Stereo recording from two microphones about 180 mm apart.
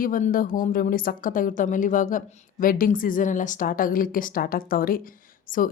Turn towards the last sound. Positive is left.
turn(degrees=50)  # may be behind; listen again after turning